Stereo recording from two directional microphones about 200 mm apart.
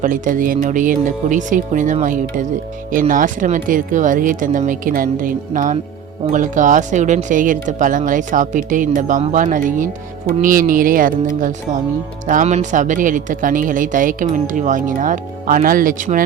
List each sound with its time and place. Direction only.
0.0 s speech: 40° right (ahead or behind)